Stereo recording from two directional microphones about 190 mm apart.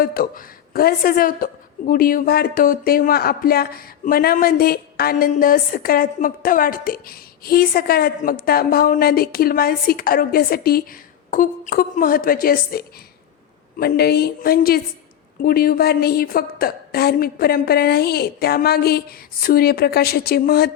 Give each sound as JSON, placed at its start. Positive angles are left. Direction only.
{"t": 0.0, "sound": "a woman's voice", "side_deg": 50}